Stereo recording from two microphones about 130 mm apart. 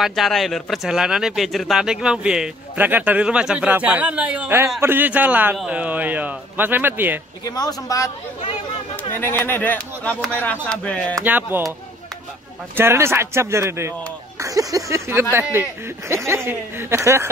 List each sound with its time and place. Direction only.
0.0 s speech: centre (ahead or behind); by 7.2 s 15° right (ahead or behind)
7.4 s speech: 30° left (ahead or behind)
9.1 s speech: 15° left (ahead or behind)
11.2 s speech: 15° right (ahead or behind)
12.7 s speech: 20° right (ahead or behind)
16.3 s speech: 20° right (ahead or behind)